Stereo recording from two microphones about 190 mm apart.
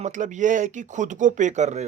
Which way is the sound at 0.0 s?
40° right (ahead or behind).